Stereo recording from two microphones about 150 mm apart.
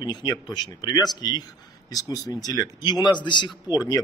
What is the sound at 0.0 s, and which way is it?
A man's voice, 30° left (ahead or behind).